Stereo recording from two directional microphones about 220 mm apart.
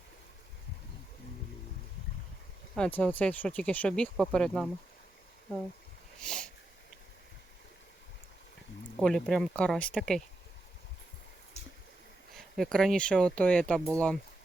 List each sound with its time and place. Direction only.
2.7 s speech: 5° left (ahead or behind)
6.2 s speech: 5° left (ahead or behind)
9.0 s speech: centre (ahead or behind)
12.5 s speech: centre (ahead or behind)